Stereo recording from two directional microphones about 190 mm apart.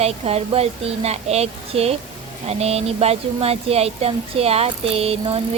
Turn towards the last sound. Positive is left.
turn(degrees=-30)  # may be behind; listen again after turning